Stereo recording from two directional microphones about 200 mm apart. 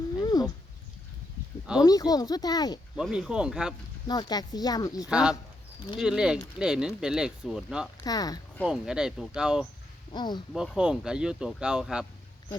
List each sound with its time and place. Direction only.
0.2 s cat: 20° left (ahead or behind)
1.8 s speech: 20° left (ahead or behind)
2.9 s speech: 5° right (ahead or behind)
4.0 s speech: 20° left (ahead or behind)
5.0 s speech: 5° right (ahead or behind)
8.0 s speech: 20° left (ahead or behind)
8.6 s speech: 5° right (ahead or behind)
10.1 s speech: 20° left (ahead or behind)
10.5 s speech: 5° right (ahead or behind)